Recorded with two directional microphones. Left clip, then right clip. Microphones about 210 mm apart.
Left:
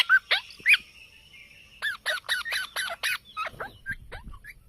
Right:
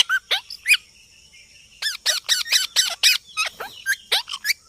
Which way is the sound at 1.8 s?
20° right (ahead or behind).